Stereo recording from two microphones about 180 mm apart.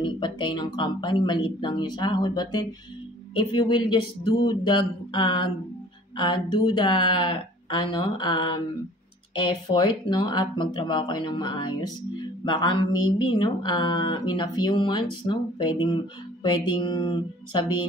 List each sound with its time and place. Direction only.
0.0 s speech: 25° left (ahead or behind)